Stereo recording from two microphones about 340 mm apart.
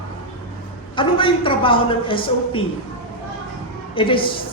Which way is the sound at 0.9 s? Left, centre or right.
Centre.